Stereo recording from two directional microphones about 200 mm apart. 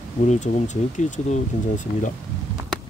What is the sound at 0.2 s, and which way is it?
Speech, 40° left (ahead or behind).